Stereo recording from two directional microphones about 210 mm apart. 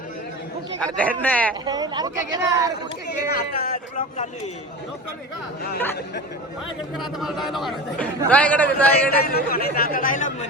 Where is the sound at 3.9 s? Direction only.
35° left (ahead or behind).